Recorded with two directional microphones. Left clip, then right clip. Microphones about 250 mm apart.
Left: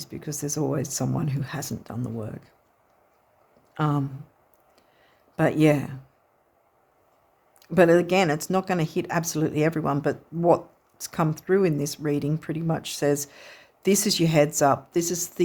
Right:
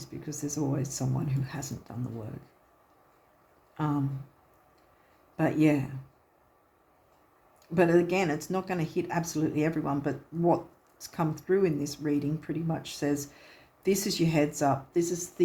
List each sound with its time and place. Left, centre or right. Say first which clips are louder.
0.0 s speech: left 4 dB; left
3.8 s speech: left 5 dB; left
5.4 s speech: left 5 dB; left
7.6 s speech: left 6 dB; left